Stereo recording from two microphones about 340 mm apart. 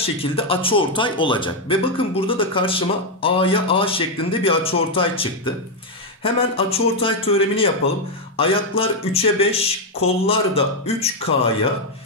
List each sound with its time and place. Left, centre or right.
0.2 s speech: centre